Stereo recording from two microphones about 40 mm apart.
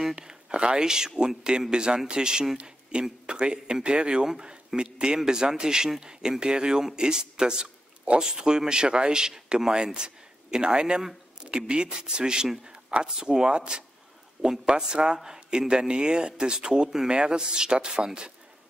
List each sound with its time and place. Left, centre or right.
0.0 s speech: centre